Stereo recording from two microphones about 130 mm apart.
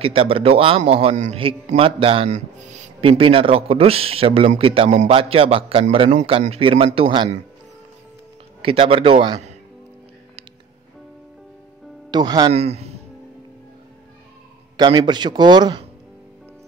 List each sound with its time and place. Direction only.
0.0 s speech: 45° right (ahead or behind)
1.8 s speech: 45° right (ahead or behind)
2.2 s speech: 65° right (ahead or behind)
3.0 s speech: 45° right (ahead or behind)
6.6 s a man's voice: 45° right (ahead or behind)
8.6 s a man's voice: 45° right (ahead or behind)
12.1 s a man's voice: 30° right (ahead or behind)
12.5 s speech: 55° right (ahead or behind)
14.8 s a man's voice: 40° right (ahead or behind)